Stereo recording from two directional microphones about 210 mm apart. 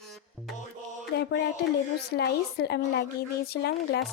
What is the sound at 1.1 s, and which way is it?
A woman's voice, 55° left (ahead or behind).